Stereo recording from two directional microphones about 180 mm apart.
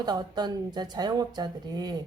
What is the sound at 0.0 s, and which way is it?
A woman's voice, 25° right (ahead or behind).